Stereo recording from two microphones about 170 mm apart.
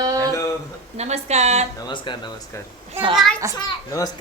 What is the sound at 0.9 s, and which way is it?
Speech, 40° right (ahead or behind).